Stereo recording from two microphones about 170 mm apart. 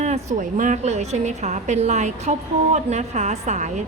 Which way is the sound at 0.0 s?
40° right (ahead or behind).